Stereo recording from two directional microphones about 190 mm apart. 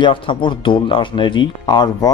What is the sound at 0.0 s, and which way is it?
Speech, 25° left (ahead or behind).